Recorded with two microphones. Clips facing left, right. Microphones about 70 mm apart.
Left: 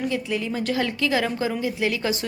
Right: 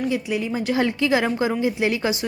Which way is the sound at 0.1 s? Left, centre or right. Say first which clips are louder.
Right 2 dB; centre.